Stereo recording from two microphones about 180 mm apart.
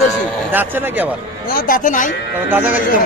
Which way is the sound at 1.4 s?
55° left (ahead or behind).